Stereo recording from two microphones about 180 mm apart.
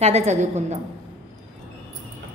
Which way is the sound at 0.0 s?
35° right (ahead or behind).